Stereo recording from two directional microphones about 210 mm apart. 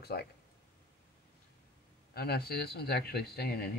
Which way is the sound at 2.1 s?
50° left (ahead or behind).